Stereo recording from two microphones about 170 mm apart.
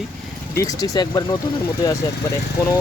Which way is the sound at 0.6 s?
20° left (ahead or behind).